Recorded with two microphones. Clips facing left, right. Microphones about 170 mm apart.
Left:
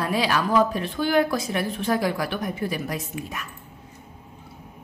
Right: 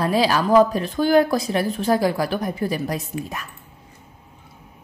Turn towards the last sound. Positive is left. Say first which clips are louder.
# right 4 dB
turn(degrees=-35)  # may be behind; listen again after turning